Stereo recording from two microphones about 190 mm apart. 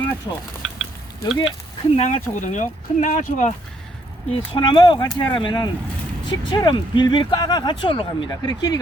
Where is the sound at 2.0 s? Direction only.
40° left (ahead or behind).